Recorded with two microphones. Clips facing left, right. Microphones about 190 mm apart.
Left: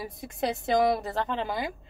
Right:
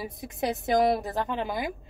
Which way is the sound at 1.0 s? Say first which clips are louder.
Even; 15° right (ahead or behind).